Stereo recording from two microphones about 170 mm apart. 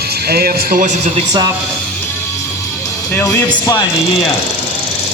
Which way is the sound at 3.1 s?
10° left (ahead or behind).